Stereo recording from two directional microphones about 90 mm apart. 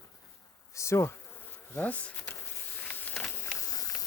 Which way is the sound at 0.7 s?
35° left (ahead or behind).